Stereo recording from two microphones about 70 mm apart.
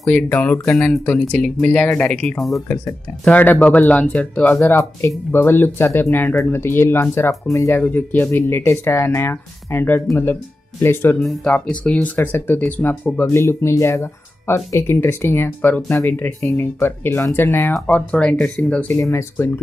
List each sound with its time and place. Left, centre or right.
0.1 s speech: left; by 2.6 s centre
3.3 s speech: left
4.6 s speech: left
7.7 s speech: left
11.1 s speech: centre
11.7 s speech: centre
12.2 s speech: left
13.4 s speech: left
18.1 s speech: centre
18.9 s speech: left